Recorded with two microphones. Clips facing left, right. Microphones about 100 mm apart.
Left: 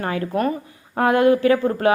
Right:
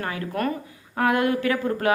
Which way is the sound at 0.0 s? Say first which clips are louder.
Left 5 dB; 30° left (ahead or behind).